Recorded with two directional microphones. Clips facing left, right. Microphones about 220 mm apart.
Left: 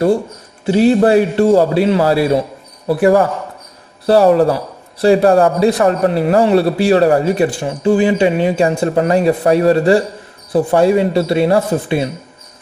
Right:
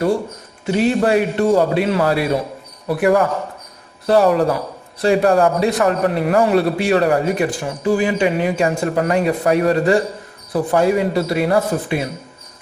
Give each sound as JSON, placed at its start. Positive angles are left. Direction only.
{"t": 0.7, "sound": "a man's voice", "side_deg": 30}